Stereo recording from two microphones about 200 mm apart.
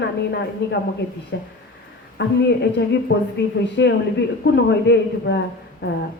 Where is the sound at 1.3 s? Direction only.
60° left (ahead or behind).